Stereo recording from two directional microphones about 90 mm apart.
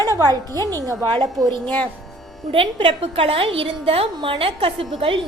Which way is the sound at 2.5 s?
90° right.